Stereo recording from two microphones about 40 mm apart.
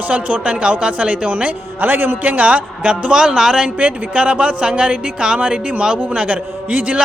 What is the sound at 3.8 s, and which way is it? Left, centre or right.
A man's voice, right.